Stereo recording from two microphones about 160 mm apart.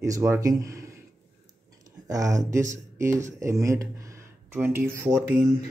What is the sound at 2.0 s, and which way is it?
Speech, 20° right (ahead or behind).